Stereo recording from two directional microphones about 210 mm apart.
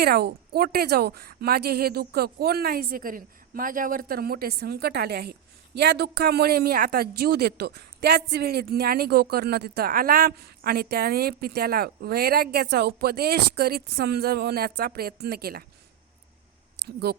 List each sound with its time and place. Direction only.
0.0 s a woman's voice: 50° right (ahead or behind)
16.7 s speech: 50° right (ahead or behind)